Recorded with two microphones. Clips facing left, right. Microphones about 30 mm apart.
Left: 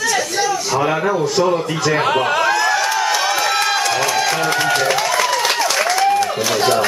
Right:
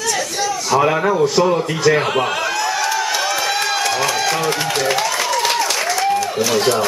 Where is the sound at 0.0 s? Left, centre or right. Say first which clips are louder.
Left 2 dB; centre.